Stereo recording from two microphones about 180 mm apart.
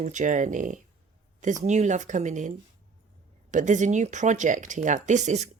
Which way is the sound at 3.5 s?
45° right (ahead or behind).